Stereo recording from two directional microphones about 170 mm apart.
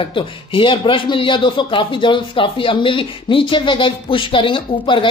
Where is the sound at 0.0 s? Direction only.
30° left (ahead or behind).